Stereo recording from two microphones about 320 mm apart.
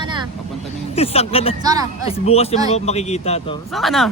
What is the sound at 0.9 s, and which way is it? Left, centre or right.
Speech, centre.